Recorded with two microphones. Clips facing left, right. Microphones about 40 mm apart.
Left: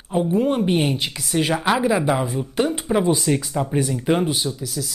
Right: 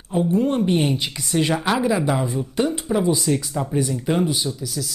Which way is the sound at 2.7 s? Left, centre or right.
Left.